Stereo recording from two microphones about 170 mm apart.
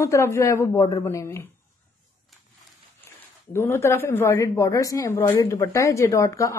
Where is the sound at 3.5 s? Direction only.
15° left (ahead or behind).